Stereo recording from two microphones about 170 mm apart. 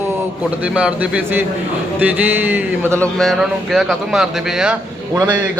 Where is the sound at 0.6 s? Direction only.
5° right (ahead or behind).